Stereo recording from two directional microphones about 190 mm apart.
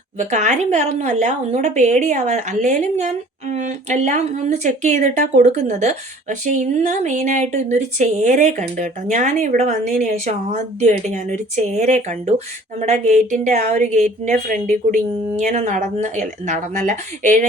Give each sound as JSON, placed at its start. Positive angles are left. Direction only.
{"t": 0.2, "sound": "speech", "side_deg": -40}